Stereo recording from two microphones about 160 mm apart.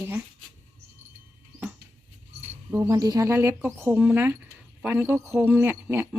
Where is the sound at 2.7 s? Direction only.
20° right (ahead or behind).